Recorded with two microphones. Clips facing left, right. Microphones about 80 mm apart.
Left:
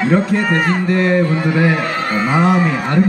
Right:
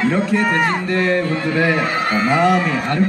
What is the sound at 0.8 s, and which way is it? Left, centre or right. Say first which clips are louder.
A man's voice: left 3 dB; centre.